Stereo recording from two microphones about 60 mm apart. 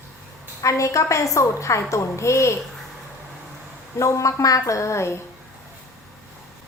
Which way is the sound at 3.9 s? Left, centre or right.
Left.